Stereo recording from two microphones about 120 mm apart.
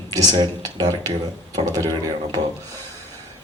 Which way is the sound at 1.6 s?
55° right (ahead or behind).